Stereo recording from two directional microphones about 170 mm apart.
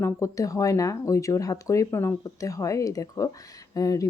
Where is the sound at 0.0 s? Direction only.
20° left (ahead or behind).